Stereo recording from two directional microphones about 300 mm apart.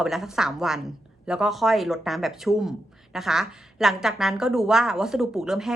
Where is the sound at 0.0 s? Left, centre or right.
Centre.